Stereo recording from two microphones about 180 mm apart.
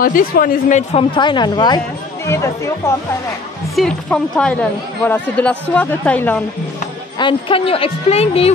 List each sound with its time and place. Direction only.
0.0 s speech: 55° left (ahead or behind)
1.1 s a woman's voice: 25° left (ahead or behind)
3.7 s speech: 5° left (ahead or behind)
7.2 s a woman's voice: 25° left (ahead or behind)